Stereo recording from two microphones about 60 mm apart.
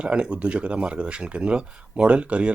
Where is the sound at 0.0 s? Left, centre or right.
Centre.